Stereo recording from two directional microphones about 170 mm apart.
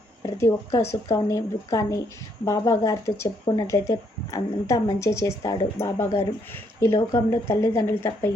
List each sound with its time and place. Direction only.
0.2 s speech: 15° left (ahead or behind)